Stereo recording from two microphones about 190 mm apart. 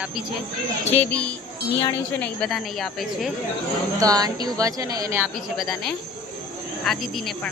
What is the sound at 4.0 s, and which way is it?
A woman's voice, 20° right (ahead or behind).